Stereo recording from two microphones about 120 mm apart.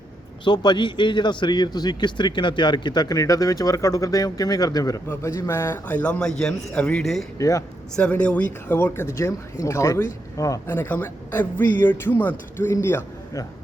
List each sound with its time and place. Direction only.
0.4 s a man's voice: 35° left (ahead or behind); by 7.3 s centre (ahead or behind)
7.3 s speech: 25° left (ahead or behind)
7.9 s speech: 10° left (ahead or behind); by 10.8 s 30° left (ahead or behind)
10.8 s a man's voice: 15° left (ahead or behind)